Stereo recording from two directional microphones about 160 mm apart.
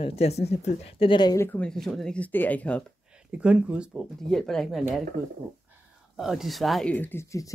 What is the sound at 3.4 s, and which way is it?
Speech, 5° right (ahead or behind).